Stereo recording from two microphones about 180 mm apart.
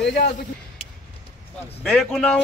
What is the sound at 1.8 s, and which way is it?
Speech, centre (ahead or behind).